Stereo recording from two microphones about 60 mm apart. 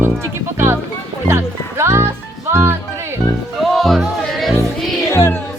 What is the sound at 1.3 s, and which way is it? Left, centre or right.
Music, right.